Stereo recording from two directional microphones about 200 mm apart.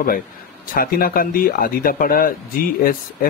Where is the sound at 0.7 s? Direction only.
45° left (ahead or behind).